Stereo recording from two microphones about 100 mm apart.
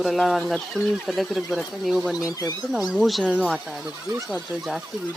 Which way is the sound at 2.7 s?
Centre (ahead or behind).